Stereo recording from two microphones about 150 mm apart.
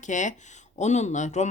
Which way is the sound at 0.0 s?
55° left (ahead or behind).